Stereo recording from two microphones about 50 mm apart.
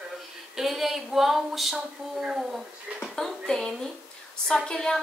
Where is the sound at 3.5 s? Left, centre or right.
Centre.